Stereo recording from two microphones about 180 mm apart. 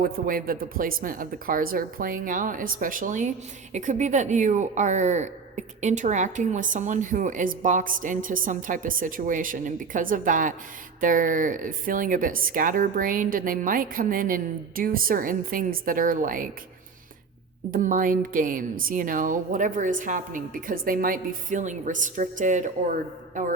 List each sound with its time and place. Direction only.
0.0 s speech: 50° right (ahead or behind)
17.7 s speech: 50° right (ahead or behind)